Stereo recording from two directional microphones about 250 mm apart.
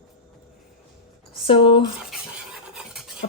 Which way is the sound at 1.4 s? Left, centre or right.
Left.